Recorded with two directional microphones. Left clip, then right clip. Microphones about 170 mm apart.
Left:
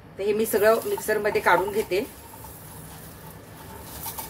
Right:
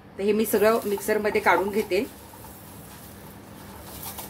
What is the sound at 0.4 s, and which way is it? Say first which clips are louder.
Speech: left 2 dB; 40° right (ahead or behind).